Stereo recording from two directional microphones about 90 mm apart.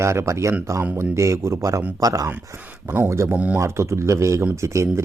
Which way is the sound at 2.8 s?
20° right (ahead or behind).